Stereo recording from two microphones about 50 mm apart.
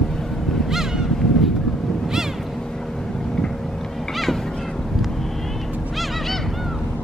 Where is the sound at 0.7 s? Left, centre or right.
Centre.